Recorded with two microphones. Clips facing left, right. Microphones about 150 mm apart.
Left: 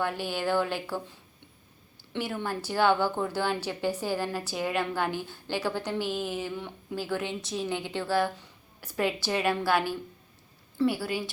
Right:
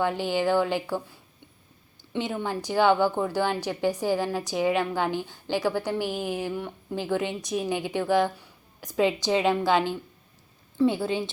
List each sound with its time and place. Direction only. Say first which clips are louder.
0.0 s a woman's voice: right 5 dB; 15° right (ahead or behind)